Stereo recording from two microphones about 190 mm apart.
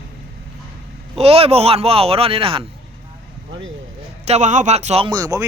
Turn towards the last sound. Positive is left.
turn(degrees=-20)  # may be behind; listen again after turning